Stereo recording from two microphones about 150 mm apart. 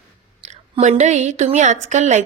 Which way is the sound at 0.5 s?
50° right (ahead or behind).